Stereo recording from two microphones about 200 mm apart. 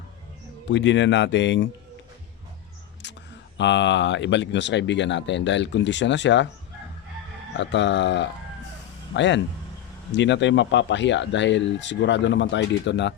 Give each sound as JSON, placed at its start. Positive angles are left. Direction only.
{"t": 0.7, "sound": "speech", "side_deg": 65}
{"t": 3.0, "sound": "a sound", "side_deg": 60}
{"t": 3.6, "sound": "speech", "side_deg": 65}
{"t": 7.5, "sound": "speech", "side_deg": 65}